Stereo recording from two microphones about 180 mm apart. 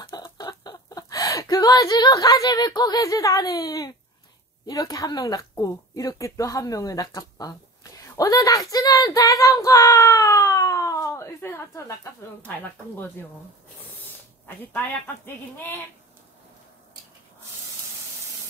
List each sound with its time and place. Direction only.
0.0 s chicken: 25° left (ahead or behind)
4.6 s a woman's voice: 20° left (ahead or behind)
14.6 s speech: 10° left (ahead or behind)